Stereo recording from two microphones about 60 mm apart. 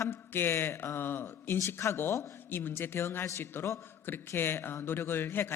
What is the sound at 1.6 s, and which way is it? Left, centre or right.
Speech, left.